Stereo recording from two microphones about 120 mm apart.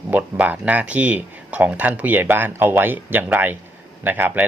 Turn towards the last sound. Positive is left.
turn(degrees=-15)  # may be behind; listen again after turning